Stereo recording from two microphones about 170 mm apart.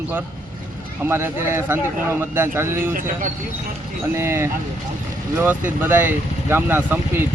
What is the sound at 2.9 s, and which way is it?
Speech, 50° right (ahead or behind).